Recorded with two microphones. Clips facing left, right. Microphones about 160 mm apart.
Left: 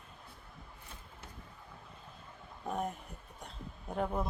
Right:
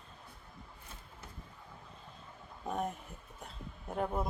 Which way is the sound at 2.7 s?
Centre (ahead or behind).